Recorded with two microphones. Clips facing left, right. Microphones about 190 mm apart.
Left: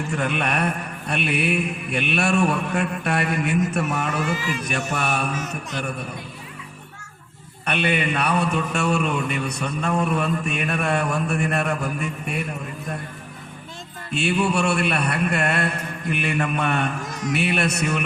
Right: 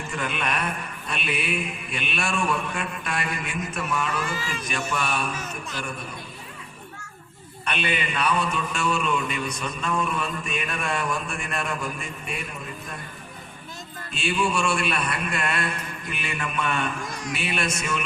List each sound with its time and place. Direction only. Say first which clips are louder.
0.2 s mantra: left 4 dB; 60° left (ahead or behind)
3.7 s a man's voice: left 4 dB; 65° left (ahead or behind)
4.9 s mantra: left 2 dB; 65° left (ahead or behind)
7.6 s mantra: left 5 dB; 60° left (ahead or behind)
14.1 s mantra: left 4 dB; 65° left (ahead or behind)
17.0 s a sound: left 2 dB; 20° left (ahead or behind)
17.3 s mantra: left 6 dB; 60° left (ahead or behind)